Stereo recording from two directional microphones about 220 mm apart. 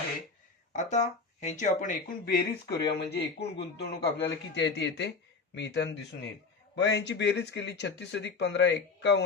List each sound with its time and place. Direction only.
0.7 s speech: 35° left (ahead or behind); by 9.2 s 50° left (ahead or behind)